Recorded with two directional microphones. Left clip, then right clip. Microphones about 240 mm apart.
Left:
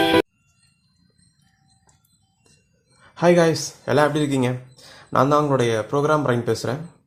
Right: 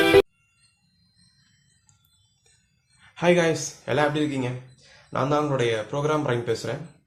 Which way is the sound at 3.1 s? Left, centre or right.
Left.